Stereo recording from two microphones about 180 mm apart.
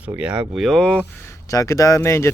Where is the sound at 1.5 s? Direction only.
15° left (ahead or behind).